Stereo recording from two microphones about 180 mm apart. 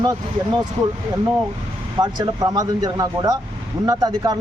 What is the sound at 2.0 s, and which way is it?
Speech, 20° right (ahead or behind).